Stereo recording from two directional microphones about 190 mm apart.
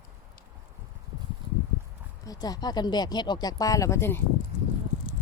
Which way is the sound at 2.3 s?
20° left (ahead or behind).